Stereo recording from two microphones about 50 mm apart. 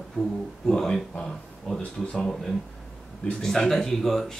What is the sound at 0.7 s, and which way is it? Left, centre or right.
Speech, centre.